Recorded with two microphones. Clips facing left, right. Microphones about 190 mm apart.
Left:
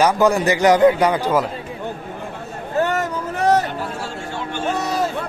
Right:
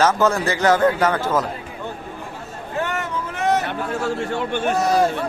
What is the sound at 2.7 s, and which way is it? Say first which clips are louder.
Vehicle: left 5 dB; 40° left (ahead or behind).